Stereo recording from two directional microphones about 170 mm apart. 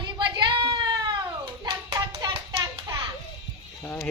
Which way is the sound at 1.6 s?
25° right (ahead or behind).